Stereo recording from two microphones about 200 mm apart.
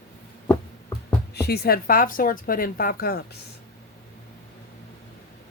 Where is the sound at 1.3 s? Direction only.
50° left (ahead or behind).